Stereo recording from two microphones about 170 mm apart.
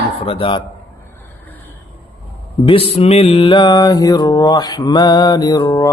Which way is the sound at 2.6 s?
35° left (ahead or behind).